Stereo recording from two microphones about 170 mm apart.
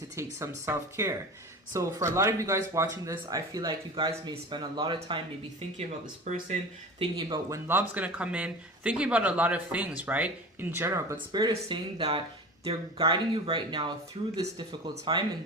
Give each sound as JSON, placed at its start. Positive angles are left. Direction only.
{"t": 0.2, "sound": "speech", "side_deg": -15}
{"t": 6.2, "sound": "speech", "side_deg": -45}
{"t": 7.0, "sound": "speech", "side_deg": -30}
{"t": 7.5, "sound": "speech", "side_deg": -15}